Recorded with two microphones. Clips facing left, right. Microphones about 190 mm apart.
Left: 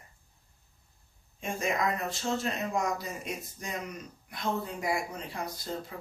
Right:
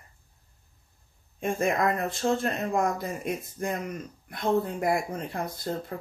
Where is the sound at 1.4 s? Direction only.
55° right (ahead or behind).